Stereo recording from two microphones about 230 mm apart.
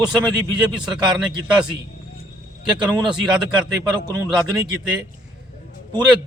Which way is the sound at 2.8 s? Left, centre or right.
Centre.